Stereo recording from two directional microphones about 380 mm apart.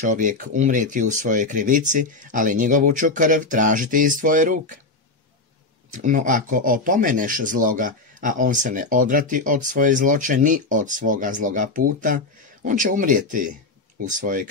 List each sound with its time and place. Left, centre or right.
0.0 s speech: centre
5.9 s speech: centre